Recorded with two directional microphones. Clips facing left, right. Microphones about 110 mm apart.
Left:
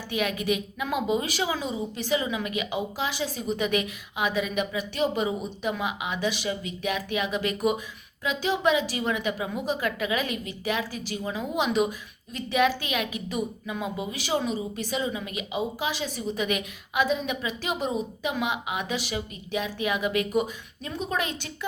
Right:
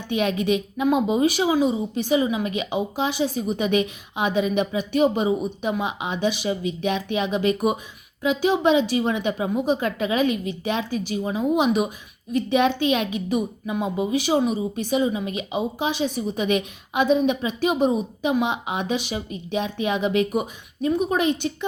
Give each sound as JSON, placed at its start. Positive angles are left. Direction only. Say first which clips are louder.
{"t": 0.1, "sound": "a woman's voice", "louder": "right 5 dB", "side_deg": -25}